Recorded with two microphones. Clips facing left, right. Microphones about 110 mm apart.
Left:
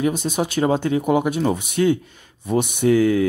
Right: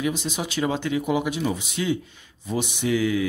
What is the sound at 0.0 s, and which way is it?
Speech, 50° left (ahead or behind).